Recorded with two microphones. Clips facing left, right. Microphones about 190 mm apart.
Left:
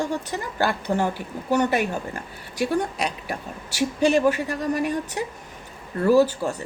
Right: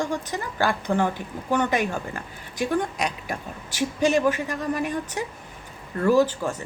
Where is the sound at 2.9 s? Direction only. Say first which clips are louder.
Left 1 dB; 35° left (ahead or behind).